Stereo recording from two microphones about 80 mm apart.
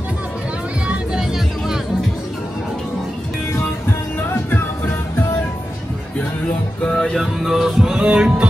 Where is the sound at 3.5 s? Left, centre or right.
Left.